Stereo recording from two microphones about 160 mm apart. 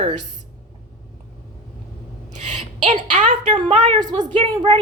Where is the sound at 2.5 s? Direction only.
50° right (ahead or behind).